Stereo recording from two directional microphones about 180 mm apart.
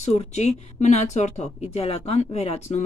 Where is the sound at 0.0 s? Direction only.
35° left (ahead or behind).